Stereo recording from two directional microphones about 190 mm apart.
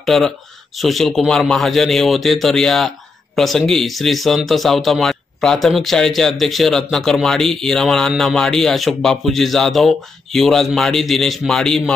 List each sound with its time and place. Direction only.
0.0 s speech: centre (ahead or behind)